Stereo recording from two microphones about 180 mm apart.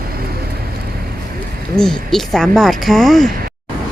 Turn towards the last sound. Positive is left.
turn(degrees=0)  # may be behind; listen again after turning